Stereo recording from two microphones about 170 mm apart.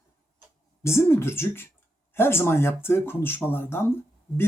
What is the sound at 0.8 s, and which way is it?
Speech, 15° left (ahead or behind).